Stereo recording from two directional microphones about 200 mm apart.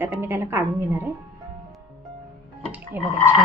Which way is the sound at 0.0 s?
10° right (ahead or behind).